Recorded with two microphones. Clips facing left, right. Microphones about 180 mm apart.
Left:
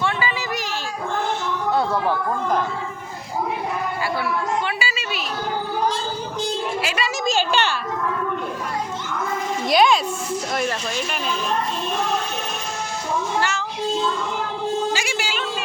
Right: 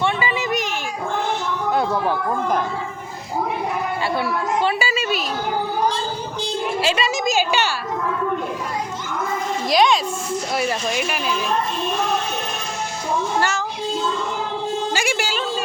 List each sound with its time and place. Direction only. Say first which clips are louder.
0.0 s a sound: right 3 dB; 20° right (ahead or behind)
1.7 s speech: even; 15° right (ahead or behind)
4.6 s a woman's voice: right 6 dB; 45° right (ahead or behind)
6.8 s a woman's voice: right 4 dB; 25° right (ahead or behind)
7.5 s speech: even; 5° right (ahead or behind)
9.6 s speech: even; centre (ahead or behind)
13.4 s cat: right 2 dB; 45° right (ahead or behind)
14.9 s a sound: right 3 dB; 50° right (ahead or behind)